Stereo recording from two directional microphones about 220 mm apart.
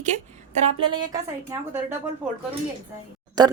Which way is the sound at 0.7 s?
20° right (ahead or behind).